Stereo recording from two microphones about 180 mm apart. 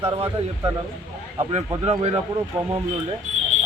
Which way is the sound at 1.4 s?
35° right (ahead or behind).